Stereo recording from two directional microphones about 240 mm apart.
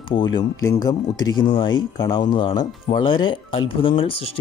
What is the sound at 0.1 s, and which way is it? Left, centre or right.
Speech, centre.